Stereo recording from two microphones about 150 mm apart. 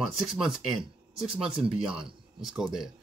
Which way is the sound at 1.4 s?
5° right (ahead or behind).